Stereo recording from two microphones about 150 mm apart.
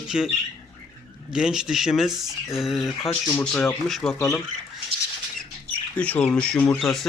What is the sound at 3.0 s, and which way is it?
Speech, 20° left (ahead or behind).